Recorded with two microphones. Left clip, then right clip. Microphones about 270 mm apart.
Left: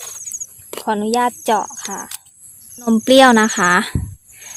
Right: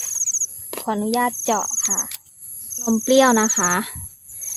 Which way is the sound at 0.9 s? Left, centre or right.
Left.